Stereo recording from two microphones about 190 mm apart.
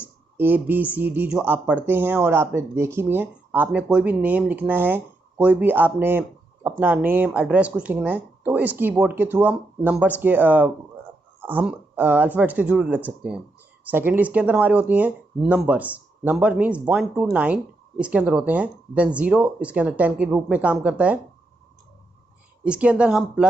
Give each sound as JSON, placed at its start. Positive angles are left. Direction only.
{"t": 0.0, "sound": "speech", "side_deg": -10}
{"t": 22.6, "sound": "speech", "side_deg": -5}